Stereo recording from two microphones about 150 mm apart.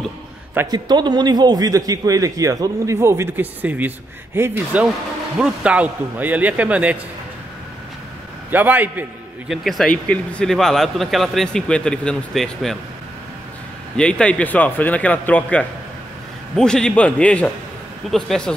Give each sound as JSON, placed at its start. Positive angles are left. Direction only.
{"t": 0.7, "sound": "a man's voice", "side_deg": -30}
{"t": 8.5, "sound": "a man's voice", "side_deg": -10}
{"t": 9.5, "sound": "speech", "side_deg": 0}
{"t": 13.9, "sound": "speech", "side_deg": 5}